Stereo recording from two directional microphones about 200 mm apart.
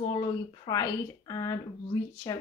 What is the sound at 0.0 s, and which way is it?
Speech, 25° left (ahead or behind).